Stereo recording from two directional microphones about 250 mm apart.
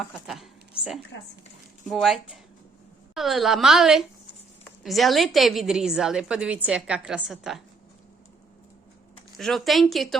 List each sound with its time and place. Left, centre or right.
0.0 s a woman's voice: centre
1.1 s speech: left
1.9 s a woman's voice: centre
9.4 s a woman's voice: centre